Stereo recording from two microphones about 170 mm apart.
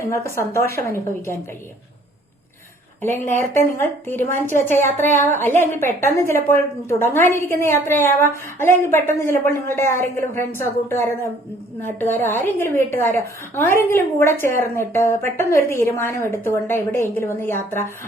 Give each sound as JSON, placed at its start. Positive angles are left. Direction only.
{"t": 0.0, "sound": "a woman's voice", "side_deg": 15}
{"t": 3.5, "sound": "a woman's voice", "side_deg": 15}